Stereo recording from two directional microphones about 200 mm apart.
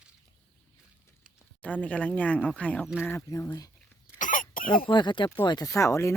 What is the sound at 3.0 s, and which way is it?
Speech, 15° left (ahead or behind).